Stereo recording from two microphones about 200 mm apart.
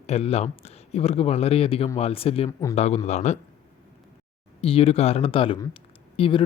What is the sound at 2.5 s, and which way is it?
Speech, 15° left (ahead or behind).